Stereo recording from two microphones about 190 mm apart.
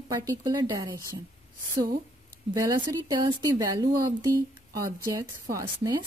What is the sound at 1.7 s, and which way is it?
Speech, 45° right (ahead or behind).